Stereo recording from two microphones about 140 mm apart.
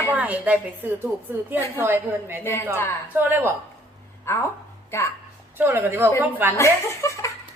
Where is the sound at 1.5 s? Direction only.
15° right (ahead or behind).